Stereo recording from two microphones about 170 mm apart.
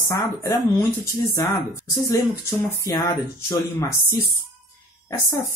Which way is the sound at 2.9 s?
15° left (ahead or behind).